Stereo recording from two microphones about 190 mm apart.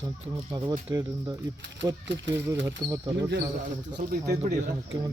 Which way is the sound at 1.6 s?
70° right (ahead or behind).